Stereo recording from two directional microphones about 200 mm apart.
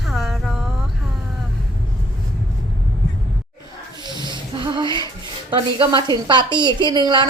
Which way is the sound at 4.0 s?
20° right (ahead or behind).